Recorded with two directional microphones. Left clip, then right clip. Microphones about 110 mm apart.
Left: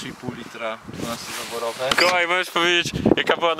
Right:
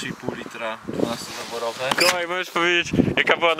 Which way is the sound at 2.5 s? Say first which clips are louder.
Left 1 dB; 15° left (ahead or behind).